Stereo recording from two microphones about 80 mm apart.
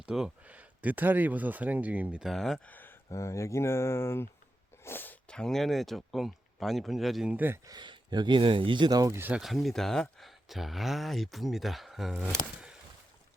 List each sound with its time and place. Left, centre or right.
0.0 s speech: centre
0.4 s speech: centre
2.2 s speech: centre
2.6 s speech: left
3.1 s speech: left
4.9 s a sound: left
5.3 s speech: centre
7.3 s speech: right
7.7 s speech: right
9.4 s speech: centre